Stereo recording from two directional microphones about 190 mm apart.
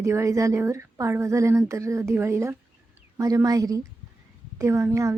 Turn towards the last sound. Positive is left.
turn(degrees=-15)  # may be behind; listen again after turning